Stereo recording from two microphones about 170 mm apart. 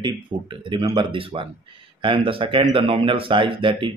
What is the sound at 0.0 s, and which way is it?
Speech, 30° right (ahead or behind).